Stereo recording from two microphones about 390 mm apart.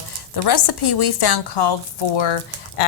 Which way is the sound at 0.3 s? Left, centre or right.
Left.